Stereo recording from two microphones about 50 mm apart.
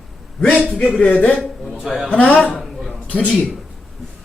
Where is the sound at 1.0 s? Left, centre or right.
Left.